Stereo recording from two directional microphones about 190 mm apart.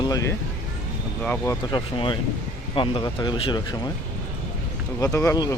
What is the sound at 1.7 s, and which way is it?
Speech, 25° left (ahead or behind).